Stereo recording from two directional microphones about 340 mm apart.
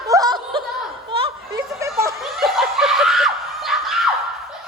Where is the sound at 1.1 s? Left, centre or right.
Centre.